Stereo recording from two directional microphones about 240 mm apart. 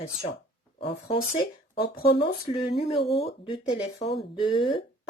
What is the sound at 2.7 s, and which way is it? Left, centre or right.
Speech, left.